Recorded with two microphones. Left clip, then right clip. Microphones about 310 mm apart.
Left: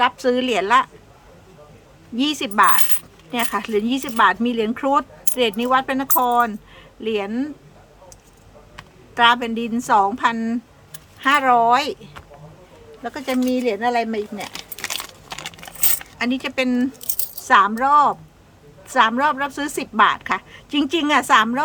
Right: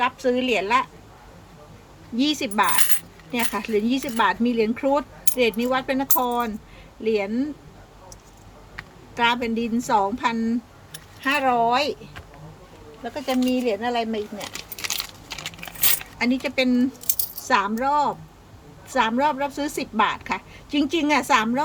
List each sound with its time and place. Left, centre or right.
0.0 s speech: centre
2.1 s speech: centre
8.7 s a woman's voice: centre
13.0 s speech: centre
15.4 s coin: centre
18.9 s speech: centre